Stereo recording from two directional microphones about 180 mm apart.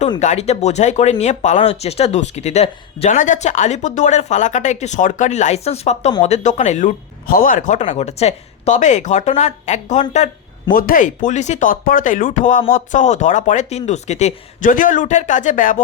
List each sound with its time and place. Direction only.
0.2 s speech: 40° left (ahead or behind)
10.7 s speech: 50° left (ahead or behind)